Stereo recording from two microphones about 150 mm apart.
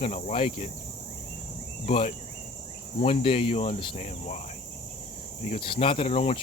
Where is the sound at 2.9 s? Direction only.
40° left (ahead or behind).